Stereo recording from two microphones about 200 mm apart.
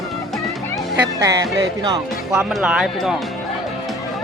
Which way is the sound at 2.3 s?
Centre (ahead or behind).